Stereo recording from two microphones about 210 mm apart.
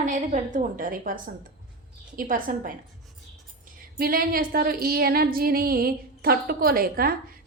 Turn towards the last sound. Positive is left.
turn(degrees=-45)  # may be behind; listen again after turning